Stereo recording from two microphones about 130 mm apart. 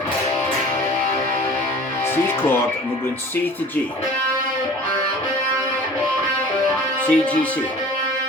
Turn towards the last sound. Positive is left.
turn(degrees=10)  # may be behind; listen again after turning